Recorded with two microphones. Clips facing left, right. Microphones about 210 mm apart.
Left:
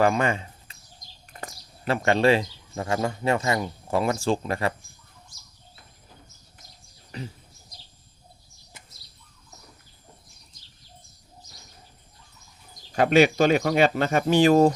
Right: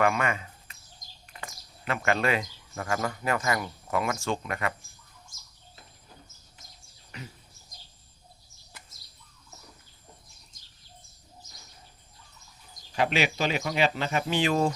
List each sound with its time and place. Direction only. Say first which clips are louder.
0.0 s a sound: left 4 dB; 30° left (ahead or behind)
1.3 s speech: left 4 dB; 40° left (ahead or behind)
7.1 s speech: left 7 dB; 35° left (ahead or behind)
12.9 s speech: left 8 dB; 45° left (ahead or behind)